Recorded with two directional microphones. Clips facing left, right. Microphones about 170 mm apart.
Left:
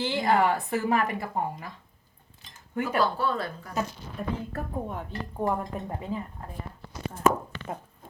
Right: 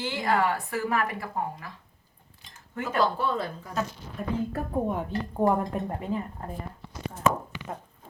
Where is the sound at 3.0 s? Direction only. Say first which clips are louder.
Even; 20° right (ahead or behind).